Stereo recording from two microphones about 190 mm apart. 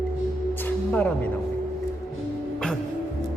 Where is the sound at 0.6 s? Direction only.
10° left (ahead or behind).